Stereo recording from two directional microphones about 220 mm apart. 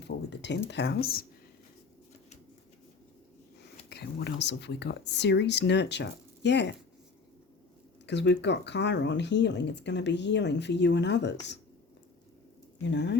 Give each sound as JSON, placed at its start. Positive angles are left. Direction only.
{"t": 0.0, "sound": "a sound", "side_deg": 50}
{"t": 0.7, "sound": "speech", "side_deg": 50}
{"t": 3.8, "sound": "speech", "side_deg": 50}
{"t": 8.0, "sound": "speech", "side_deg": 50}
{"t": 12.9, "sound": "speech", "side_deg": 50}